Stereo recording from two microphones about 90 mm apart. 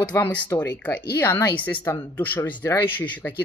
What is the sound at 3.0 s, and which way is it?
Speech, 20° left (ahead or behind).